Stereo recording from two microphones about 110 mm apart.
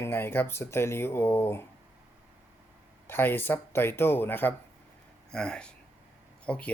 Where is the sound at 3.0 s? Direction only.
20° left (ahead or behind).